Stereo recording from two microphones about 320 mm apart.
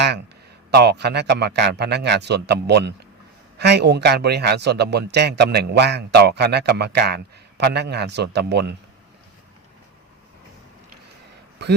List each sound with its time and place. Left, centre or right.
0.7 s a man's voice: right